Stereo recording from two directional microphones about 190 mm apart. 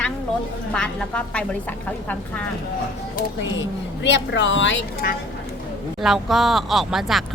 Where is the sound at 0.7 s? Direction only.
5° left (ahead or behind).